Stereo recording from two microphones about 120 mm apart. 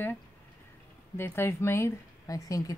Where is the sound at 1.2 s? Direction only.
20° left (ahead or behind).